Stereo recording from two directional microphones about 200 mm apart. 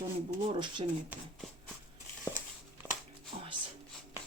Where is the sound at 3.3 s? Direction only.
35° right (ahead or behind).